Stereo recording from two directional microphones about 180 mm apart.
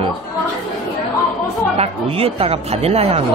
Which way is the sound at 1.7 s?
35° right (ahead or behind).